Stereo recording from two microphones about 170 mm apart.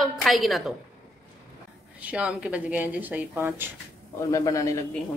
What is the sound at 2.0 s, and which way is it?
Speech, 10° right (ahead or behind).